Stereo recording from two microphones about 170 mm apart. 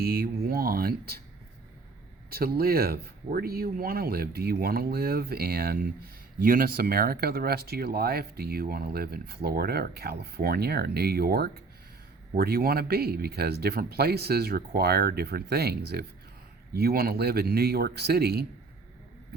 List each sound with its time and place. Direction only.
0.0 s speech: 65° right (ahead or behind)
2.3 s speech: 65° right (ahead or behind)